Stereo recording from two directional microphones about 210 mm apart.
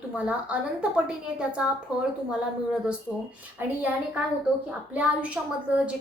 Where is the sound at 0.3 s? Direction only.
5° right (ahead or behind).